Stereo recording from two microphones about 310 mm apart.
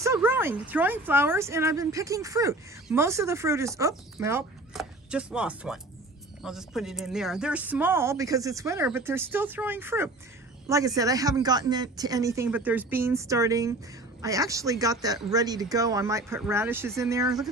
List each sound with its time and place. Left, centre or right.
0.0 s a woman's voice: centre